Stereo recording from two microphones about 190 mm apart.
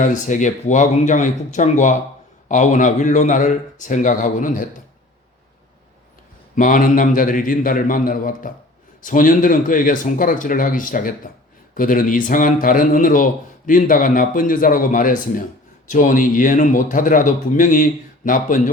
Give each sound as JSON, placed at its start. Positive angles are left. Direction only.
{"t": 0.0, "sound": "speech", "side_deg": 40}
{"t": 6.6, "sound": "a man's voice", "side_deg": 45}